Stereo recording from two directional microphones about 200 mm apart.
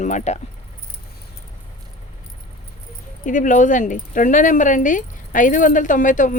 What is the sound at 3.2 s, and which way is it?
Speech, 40° left (ahead or behind).